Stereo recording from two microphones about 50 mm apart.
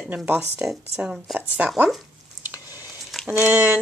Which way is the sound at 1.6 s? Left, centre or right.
Right.